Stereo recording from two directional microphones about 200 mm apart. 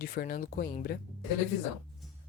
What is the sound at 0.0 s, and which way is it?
Speech, 45° left (ahead or behind).